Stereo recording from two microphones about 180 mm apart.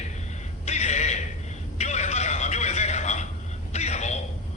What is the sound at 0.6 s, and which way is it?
Music, 40° left (ahead or behind).